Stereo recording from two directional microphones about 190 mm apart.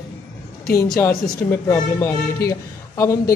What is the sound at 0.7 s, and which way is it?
Speech, 15° left (ahead or behind).